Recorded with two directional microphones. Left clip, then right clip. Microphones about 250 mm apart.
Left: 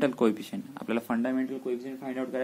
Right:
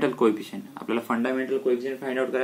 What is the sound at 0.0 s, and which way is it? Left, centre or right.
Speech, left.